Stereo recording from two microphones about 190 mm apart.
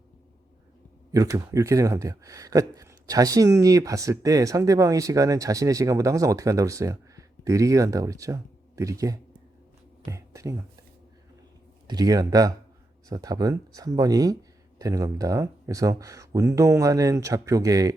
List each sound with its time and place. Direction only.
1.1 s speech: 20° right (ahead or behind)
11.9 s speech: 20° right (ahead or behind)